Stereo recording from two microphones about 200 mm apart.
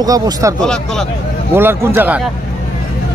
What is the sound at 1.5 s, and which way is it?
Speech, 10° right (ahead or behind).